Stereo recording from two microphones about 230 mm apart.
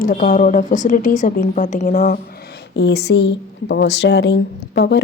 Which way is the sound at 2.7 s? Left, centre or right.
Left.